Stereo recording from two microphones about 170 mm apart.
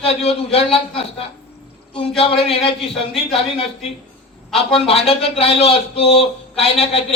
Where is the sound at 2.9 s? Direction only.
Centre (ahead or behind).